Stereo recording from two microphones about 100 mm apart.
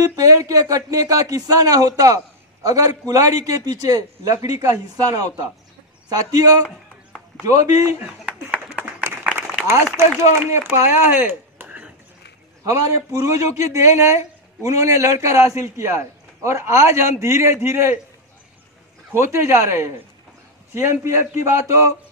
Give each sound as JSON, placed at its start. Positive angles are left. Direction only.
{"t": 0.0, "sound": "speech", "side_deg": -35}
{"t": 8.3, "sound": "a sound", "side_deg": -10}
{"t": 8.8, "sound": "applause", "side_deg": -15}
{"t": 10.5, "sound": "speech", "side_deg": -25}
{"t": 12.6, "sound": "a man's voice", "side_deg": -35}
{"t": 19.1, "sound": "a man's voice", "side_deg": -25}